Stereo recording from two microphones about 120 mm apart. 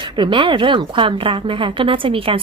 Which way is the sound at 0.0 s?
45° right (ahead or behind).